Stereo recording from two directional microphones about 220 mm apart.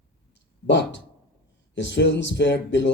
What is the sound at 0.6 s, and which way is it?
Speech, 55° left (ahead or behind).